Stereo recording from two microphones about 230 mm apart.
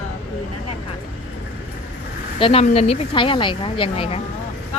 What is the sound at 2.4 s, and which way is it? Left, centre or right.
Speech, left.